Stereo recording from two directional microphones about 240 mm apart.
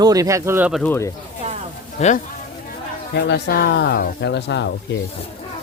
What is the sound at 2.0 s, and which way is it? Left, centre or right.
Speech, left.